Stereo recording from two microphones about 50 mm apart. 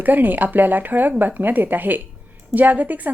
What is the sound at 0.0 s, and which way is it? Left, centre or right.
A woman's voice, right.